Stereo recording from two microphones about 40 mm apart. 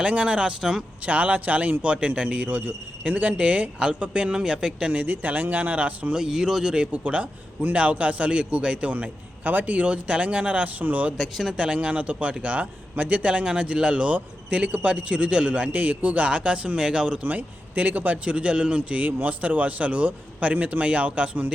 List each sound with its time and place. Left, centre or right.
0.0 s a man's voice: right
0.6 s speech: centre
1.0 s a man's voice: right; by 4.9 s centre
4.9 s speech: right
6.1 s speech: centre
6.9 s a man's voice: right
9.7 s a man's voice: right
11.2 s speech: centre
11.5 s a man's voice: right
15.7 s a man's voice: right
17.2 s speech: right
18.3 s a man's voice: right
19.0 s a man's voice: right